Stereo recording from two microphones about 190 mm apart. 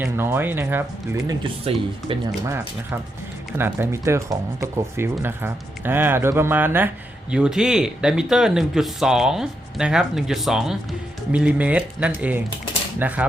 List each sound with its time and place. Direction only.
0.0 s speech: 10° right (ahead or behind)
1.7 s speech: 30° right (ahead or behind)
3.6 s speech: 15° right (ahead or behind)